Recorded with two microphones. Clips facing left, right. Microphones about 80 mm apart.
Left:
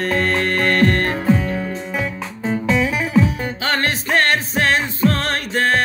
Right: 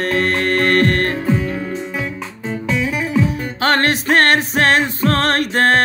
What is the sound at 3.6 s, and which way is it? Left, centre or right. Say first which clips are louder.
Music: right 6 dB; right.